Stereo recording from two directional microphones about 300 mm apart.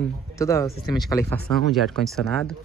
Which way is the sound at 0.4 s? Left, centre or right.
Centre.